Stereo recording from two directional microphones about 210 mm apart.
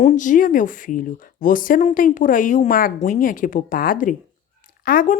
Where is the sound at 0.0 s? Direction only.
35° left (ahead or behind).